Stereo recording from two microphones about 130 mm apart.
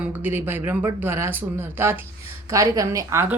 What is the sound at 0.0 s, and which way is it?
Speech, 15° right (ahead or behind).